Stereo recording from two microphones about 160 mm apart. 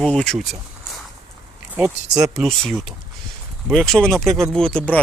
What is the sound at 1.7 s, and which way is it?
Speech, 5° right (ahead or behind).